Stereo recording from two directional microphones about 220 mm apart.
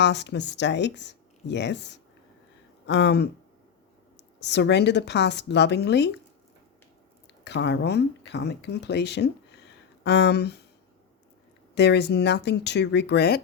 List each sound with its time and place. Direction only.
0.0 s speech: 50° left (ahead or behind)
7.4 s speech: 50° left (ahead or behind)
11.7 s speech: 50° left (ahead or behind)